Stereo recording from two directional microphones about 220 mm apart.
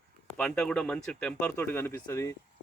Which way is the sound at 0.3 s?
5° left (ahead or behind).